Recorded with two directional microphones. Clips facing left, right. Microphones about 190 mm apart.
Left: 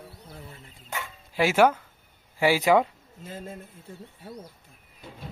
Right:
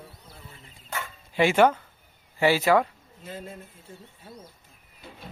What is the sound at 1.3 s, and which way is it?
Speech, 5° left (ahead or behind).